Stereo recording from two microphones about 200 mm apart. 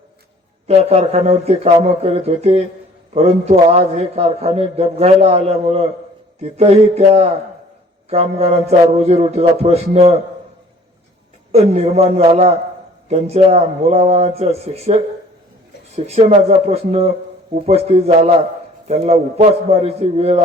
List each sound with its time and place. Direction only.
0.7 s a man's voice: 30° right (ahead or behind)
11.5 s a man's voice: 30° right (ahead or behind)
16.0 s a man's voice: 30° right (ahead or behind)